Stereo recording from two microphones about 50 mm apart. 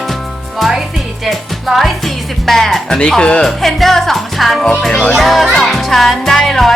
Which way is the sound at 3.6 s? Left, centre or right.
Centre.